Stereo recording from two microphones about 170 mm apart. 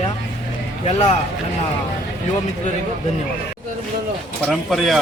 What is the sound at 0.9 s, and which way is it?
Speech, 35° left (ahead or behind).